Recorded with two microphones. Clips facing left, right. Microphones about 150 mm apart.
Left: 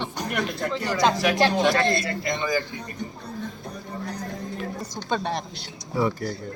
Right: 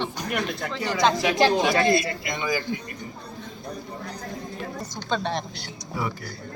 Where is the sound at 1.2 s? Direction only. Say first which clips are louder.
Even; 20° right (ahead or behind).